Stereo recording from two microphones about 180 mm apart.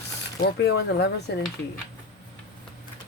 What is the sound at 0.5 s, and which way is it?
Speech, 70° left (ahead or behind).